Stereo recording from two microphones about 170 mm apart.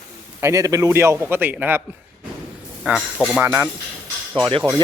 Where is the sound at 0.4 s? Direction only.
20° right (ahead or behind).